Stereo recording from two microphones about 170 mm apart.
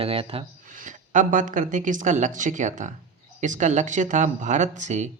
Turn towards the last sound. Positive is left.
turn(degrees=-45)  # may be behind; listen again after turning